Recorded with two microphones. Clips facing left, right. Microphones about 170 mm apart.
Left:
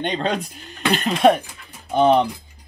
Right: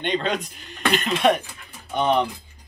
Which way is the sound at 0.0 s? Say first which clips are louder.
Left 1 dB; 40° left (ahead or behind).